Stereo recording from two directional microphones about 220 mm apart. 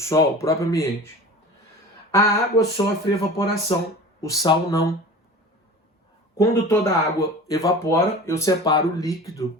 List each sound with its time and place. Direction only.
0.0 s speech: 15° left (ahead or behind)
2.1 s speech: 15° left (ahead or behind)
6.3 s speech: 10° left (ahead or behind)